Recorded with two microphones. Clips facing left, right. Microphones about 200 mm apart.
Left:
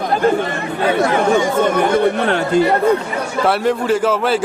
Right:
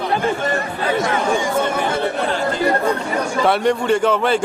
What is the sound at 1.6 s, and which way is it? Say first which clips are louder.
Speech: left 6 dB; 60° left (ahead or behind).